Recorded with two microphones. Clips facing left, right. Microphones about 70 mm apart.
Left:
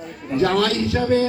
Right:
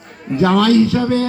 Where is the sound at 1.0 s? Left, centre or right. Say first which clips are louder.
Right 1 dB; right.